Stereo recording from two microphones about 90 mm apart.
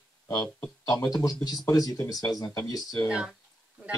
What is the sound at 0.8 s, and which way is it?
Speech, 40° left (ahead or behind).